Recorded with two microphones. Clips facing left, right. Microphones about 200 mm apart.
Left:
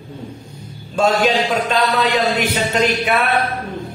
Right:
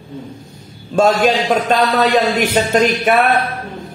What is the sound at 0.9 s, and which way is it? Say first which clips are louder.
A man's voice: right 3 dB; 45° right (ahead or behind).